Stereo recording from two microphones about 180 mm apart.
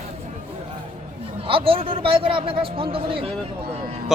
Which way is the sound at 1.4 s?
30° right (ahead or behind).